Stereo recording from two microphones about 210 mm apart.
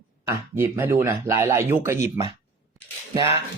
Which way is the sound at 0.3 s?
10° right (ahead or behind).